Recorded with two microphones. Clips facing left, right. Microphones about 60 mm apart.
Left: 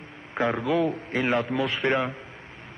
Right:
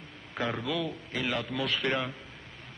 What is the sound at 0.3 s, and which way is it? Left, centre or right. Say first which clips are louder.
A man's voice: left 7 dB; left.